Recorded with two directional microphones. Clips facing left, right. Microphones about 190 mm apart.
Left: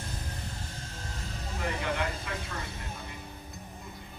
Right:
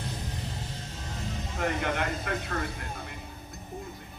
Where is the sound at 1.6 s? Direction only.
55° right (ahead or behind).